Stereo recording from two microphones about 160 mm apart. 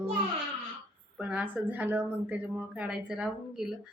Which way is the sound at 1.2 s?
10° right (ahead or behind).